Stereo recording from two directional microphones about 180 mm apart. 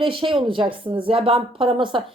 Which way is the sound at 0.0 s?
30° right (ahead or behind).